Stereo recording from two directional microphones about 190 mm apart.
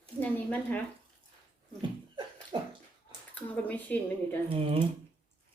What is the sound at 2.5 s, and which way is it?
Bathtub, 25° right (ahead or behind).